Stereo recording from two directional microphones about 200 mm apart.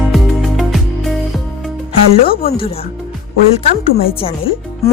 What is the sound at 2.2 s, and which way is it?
Speech, 45° left (ahead or behind).